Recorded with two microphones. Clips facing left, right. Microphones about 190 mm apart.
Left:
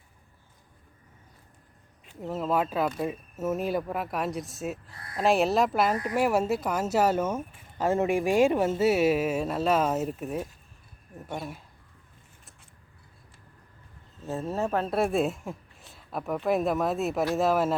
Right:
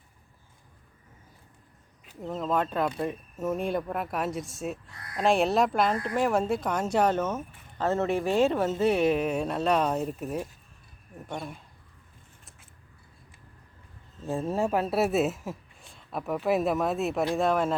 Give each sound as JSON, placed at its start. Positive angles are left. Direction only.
{"t": 2.0, "sound": "speech", "side_deg": 5}
{"t": 4.9, "sound": "speech", "side_deg": 30}
{"t": 5.1, "sound": "speech", "side_deg": 0}
{"t": 14.3, "sound": "speech", "side_deg": -15}